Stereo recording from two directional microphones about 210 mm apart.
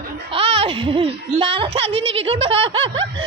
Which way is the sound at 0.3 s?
25° right (ahead or behind).